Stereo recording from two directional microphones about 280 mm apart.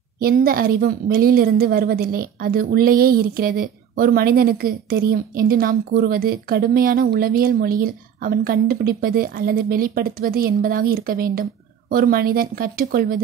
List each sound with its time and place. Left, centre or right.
0.2 s a woman's voice: right